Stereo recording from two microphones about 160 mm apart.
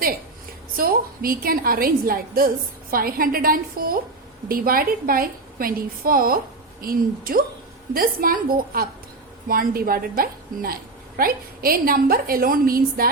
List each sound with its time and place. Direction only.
0.8 s a woman's voice: 65° right (ahead or behind)